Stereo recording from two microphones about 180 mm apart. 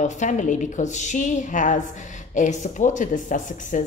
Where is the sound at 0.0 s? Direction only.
40° left (ahead or behind).